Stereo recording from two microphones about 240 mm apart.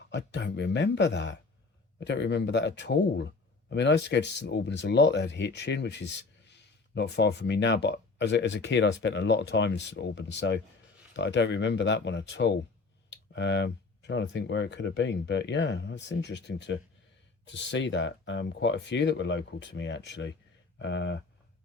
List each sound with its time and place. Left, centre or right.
0.1 s speech: left